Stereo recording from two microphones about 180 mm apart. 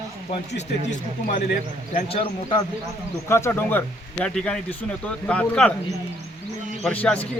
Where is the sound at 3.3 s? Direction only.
15° left (ahead or behind).